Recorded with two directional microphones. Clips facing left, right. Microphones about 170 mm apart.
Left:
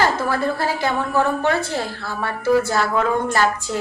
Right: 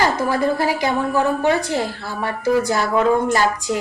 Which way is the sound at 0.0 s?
15° right (ahead or behind).